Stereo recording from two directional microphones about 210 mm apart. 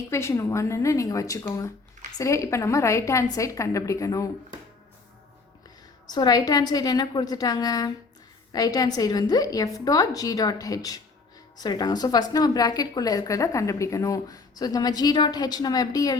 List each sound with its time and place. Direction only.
0.1 s a woman's voice: 15° left (ahead or behind)
6.1 s a woman's voice: 20° left (ahead or behind)